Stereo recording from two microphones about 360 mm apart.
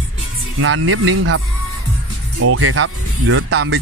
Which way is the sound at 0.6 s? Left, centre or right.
Right.